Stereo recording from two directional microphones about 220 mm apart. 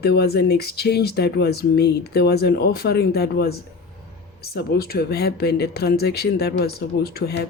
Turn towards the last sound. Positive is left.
turn(degrees=45)  # may be behind; listen again after turning